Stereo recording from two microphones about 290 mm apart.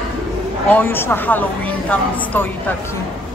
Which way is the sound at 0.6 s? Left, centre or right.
Centre.